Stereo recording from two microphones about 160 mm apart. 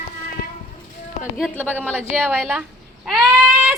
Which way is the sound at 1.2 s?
5° right (ahead or behind).